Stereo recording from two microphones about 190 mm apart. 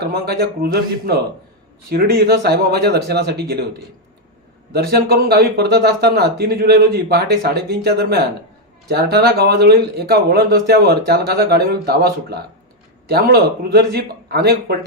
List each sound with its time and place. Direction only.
0.0 s speech: 55° right (ahead or behind)
4.7 s speech: 55° right (ahead or behind)